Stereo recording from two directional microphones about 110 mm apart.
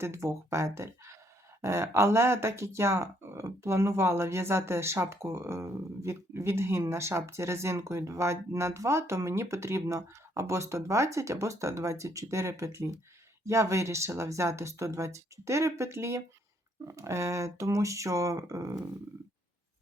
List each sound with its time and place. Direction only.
0.0 s speech: 25° right (ahead or behind)